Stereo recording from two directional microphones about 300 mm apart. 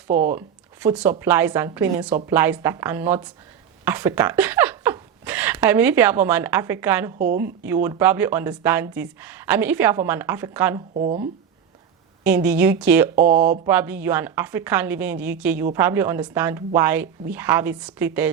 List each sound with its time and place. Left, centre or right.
0.1 s speech: right
0.3 s speech: centre
10.9 s speech: right
12.2 s a woman's voice: centre